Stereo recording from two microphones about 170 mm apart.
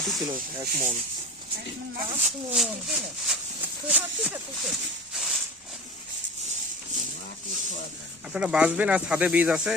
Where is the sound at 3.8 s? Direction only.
10° right (ahead or behind).